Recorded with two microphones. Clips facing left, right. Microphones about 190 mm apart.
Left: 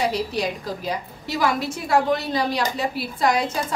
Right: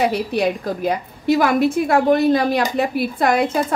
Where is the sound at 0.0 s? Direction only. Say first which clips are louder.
Right 5 dB; 60° right (ahead or behind).